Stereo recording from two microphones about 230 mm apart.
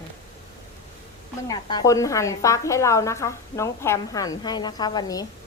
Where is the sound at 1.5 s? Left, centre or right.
Centre.